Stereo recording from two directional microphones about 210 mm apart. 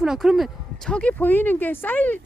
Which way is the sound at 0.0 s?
Centre (ahead or behind).